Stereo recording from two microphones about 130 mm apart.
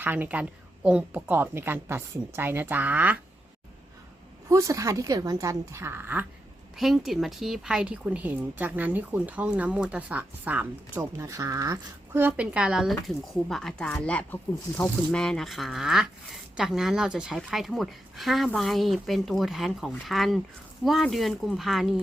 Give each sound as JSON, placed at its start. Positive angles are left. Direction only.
{"t": 0.0, "sound": "speech", "side_deg": -15}
{"t": 4.4, "sound": "a woman's voice", "side_deg": -25}
{"t": 6.7, "sound": "speech", "side_deg": 0}
{"t": 11.2, "sound": "a woman's voice", "side_deg": -25}
{"t": 12.2, "sound": "speech", "side_deg": -10}